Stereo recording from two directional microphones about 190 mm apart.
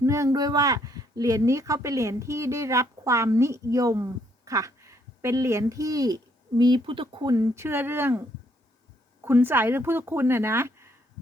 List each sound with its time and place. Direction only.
0.0 s speech: 15° right (ahead or behind)
9.2 s speech: 10° right (ahead or behind)